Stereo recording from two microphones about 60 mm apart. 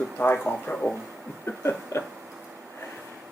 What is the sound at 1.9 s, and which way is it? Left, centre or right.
Speech, left.